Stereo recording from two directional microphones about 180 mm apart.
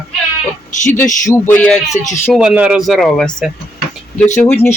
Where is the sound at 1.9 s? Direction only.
45° left (ahead or behind).